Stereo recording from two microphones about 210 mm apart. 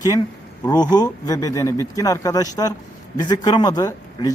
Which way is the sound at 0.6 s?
20° left (ahead or behind).